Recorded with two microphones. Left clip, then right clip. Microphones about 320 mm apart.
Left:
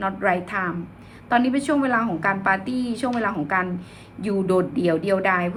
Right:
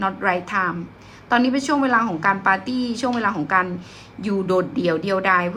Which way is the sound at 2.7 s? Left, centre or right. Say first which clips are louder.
Right 2 dB; right.